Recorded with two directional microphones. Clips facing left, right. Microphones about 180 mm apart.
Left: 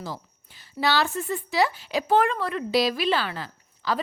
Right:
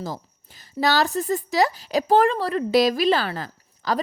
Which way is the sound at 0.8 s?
40° right (ahead or behind).